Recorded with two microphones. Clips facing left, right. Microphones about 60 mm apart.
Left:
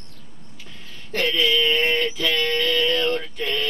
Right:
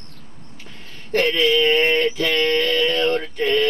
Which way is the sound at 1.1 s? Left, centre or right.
Right.